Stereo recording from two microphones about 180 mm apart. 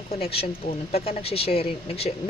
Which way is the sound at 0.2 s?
30° left (ahead or behind).